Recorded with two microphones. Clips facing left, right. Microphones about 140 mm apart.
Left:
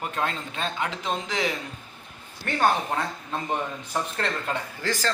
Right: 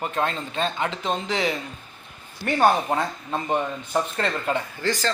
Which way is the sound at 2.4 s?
10° right (ahead or behind).